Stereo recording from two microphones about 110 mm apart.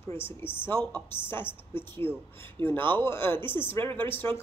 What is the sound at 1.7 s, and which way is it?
A woman's voice, 20° left (ahead or behind).